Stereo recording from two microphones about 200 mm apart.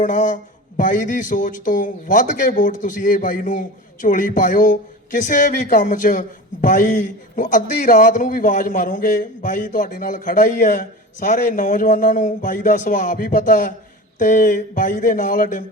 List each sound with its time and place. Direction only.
0.0 s speech: 40° left (ahead or behind)